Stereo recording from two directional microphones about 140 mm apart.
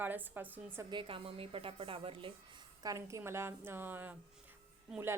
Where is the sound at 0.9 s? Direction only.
35° right (ahead or behind).